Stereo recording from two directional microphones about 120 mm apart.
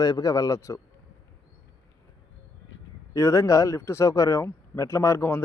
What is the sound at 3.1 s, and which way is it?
Speech, 25° left (ahead or behind).